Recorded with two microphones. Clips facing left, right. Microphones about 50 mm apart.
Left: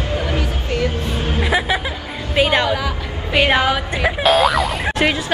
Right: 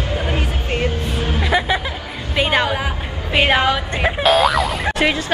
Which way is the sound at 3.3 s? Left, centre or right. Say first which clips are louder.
Even; centre.